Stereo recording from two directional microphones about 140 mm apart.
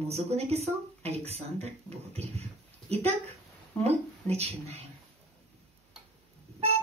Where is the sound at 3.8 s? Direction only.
50° right (ahead or behind).